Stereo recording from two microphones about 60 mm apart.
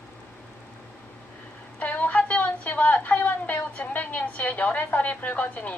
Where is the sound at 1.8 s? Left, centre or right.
Left.